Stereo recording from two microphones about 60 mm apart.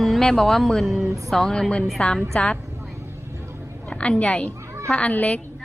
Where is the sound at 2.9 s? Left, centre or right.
Right.